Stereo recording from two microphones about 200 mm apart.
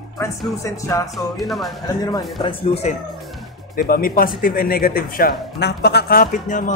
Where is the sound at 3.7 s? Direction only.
45° left (ahead or behind).